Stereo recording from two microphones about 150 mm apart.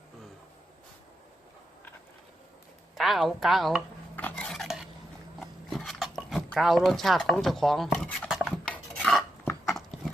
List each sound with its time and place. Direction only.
2.9 s a woman's voice: centre (ahead or behind)
4.1 s dishes: 10° left (ahead or behind)
5.4 s a sound: centre (ahead or behind)
8.7 s dishes: 5° left (ahead or behind)